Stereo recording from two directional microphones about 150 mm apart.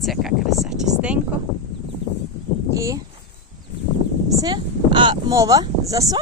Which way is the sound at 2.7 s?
20° right (ahead or behind).